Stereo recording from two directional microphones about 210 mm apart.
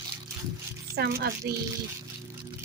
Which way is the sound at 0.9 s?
50° right (ahead or behind).